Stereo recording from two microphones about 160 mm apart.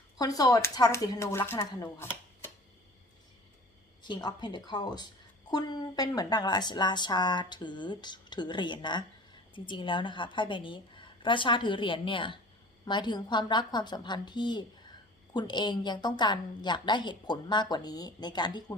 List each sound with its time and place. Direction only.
0.2 s speech: 25° left (ahead or behind)
4.0 s a woman's voice: 25° left (ahead or behind)